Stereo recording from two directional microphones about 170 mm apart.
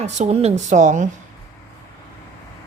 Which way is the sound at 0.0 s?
40° right (ahead or behind).